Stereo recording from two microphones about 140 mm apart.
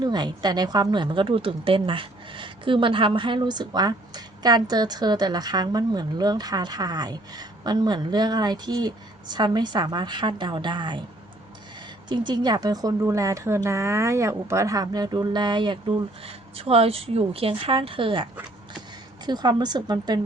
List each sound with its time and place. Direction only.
0.0 s a woman's voice: 30° right (ahead or behind)
12.0 s a woman's voice: 35° right (ahead or behind)